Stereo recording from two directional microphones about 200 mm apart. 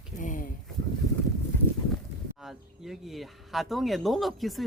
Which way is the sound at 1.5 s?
10° left (ahead or behind).